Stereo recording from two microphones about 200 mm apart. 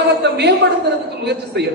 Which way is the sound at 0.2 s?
55° right (ahead or behind).